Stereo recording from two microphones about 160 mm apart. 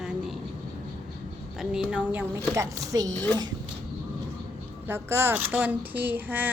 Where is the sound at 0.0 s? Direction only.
5° right (ahead or behind).